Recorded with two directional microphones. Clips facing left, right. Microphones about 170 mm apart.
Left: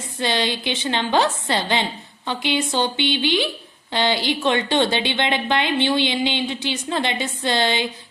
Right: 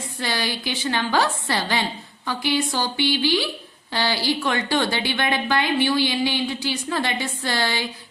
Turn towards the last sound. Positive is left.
turn(degrees=20)  # may be behind; listen again after turning